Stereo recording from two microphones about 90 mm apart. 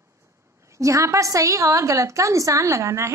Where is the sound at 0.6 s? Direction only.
35° right (ahead or behind).